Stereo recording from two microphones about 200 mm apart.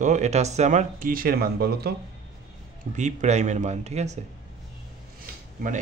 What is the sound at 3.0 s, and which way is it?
Speech, 35° right (ahead or behind).